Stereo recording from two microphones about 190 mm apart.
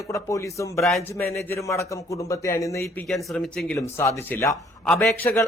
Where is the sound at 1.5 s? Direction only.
15° left (ahead or behind).